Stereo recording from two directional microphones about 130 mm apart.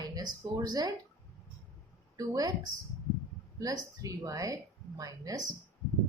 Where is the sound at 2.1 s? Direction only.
25° right (ahead or behind).